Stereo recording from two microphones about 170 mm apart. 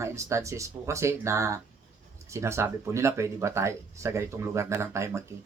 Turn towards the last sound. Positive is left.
turn(degrees=-15)  # may be behind; listen again after turning